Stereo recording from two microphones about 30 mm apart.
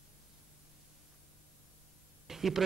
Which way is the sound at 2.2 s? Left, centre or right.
Centre.